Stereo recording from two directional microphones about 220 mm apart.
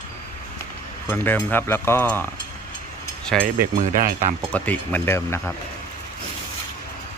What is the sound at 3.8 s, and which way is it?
Speech, 40° right (ahead or behind).